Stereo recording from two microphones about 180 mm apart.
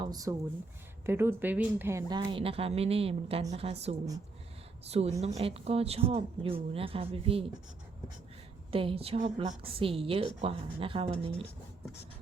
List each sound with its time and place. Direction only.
0.0 s speech: 20° right (ahead or behind)
8.7 s speech: 30° right (ahead or behind)